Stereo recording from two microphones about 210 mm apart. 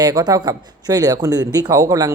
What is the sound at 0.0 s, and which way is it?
Speech, 20° right (ahead or behind).